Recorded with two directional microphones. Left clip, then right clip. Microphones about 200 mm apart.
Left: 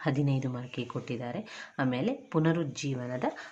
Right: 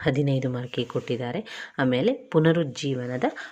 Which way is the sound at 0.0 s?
20° right (ahead or behind).